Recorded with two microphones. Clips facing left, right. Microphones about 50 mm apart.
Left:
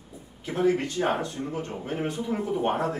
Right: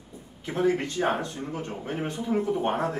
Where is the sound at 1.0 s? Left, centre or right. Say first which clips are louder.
Even; centre.